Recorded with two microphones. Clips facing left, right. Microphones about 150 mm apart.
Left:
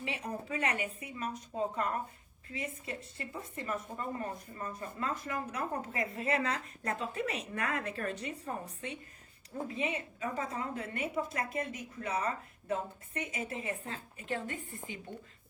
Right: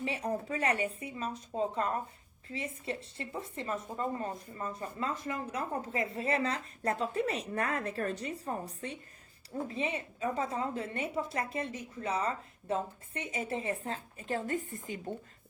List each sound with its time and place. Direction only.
0.0 s a woman's voice: 35° right (ahead or behind)